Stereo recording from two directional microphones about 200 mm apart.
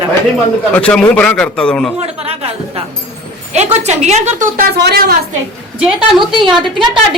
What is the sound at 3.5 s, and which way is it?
A woman's voice, 35° right (ahead or behind).